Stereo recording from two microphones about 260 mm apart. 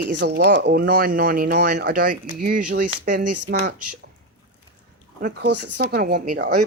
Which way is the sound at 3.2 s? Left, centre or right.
Right.